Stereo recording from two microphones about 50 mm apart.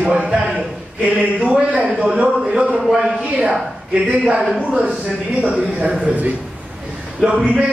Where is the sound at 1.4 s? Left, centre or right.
Right.